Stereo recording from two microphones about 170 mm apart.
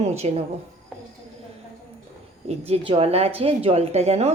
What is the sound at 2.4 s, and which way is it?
A woman's voice, 35° right (ahead or behind).